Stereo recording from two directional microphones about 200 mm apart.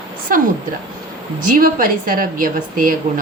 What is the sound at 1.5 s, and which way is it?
A woman's voice, 45° right (ahead or behind).